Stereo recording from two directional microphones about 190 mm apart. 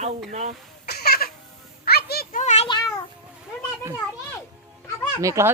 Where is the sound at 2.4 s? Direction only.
35° left (ahead or behind).